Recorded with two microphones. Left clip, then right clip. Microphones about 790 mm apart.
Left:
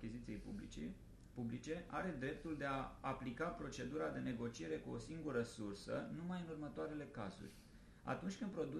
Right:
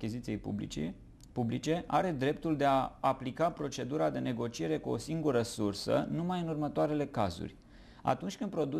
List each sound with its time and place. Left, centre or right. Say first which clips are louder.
0.3 s speech: right 14 dB; right